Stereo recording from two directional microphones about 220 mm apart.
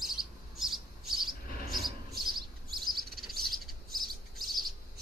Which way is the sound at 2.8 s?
45° right (ahead or behind).